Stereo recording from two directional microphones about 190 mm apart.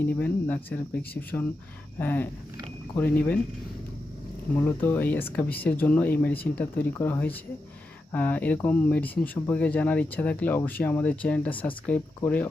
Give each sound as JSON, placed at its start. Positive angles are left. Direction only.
{"t": 0.0, "sound": "speech", "side_deg": 10}
{"t": 4.5, "sound": "speech", "side_deg": 10}